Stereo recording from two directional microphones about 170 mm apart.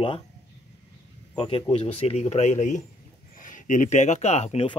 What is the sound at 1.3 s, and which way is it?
Speech, 35° left (ahead or behind).